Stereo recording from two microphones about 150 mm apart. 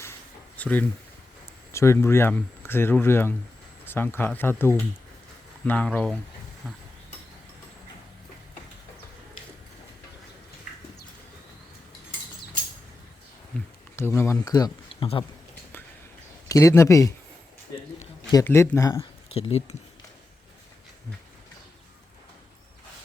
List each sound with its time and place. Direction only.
0.0 s a sound: 15° left (ahead or behind)
1.7 s speech: 20° left (ahead or behind)
13.5 s speech: 10° left (ahead or behind); by 14.7 s 25° left (ahead or behind)
16.5 s speech: 20° left (ahead or behind)
18.4 s speech: 15° left (ahead or behind)
19.3 s speech: 40° left (ahead or behind)